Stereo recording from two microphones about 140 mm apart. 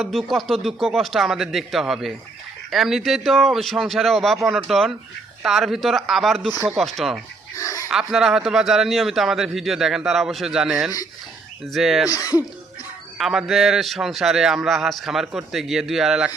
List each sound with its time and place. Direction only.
0.0 s a man's voice: centre (ahead or behind)
7.5 s a sound: 25° left (ahead or behind)
7.9 s a man's voice: 5° right (ahead or behind)
12.1 s speech: 25° left (ahead or behind)
13.1 s a man's voice: centre (ahead or behind)